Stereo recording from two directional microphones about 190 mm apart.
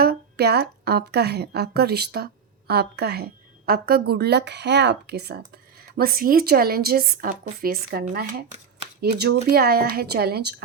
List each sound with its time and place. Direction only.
0.0 s a woman's voice: 55° right (ahead or behind)
8.8 s a sound: 60° right (ahead or behind)
9.5 s speech: 55° right (ahead or behind)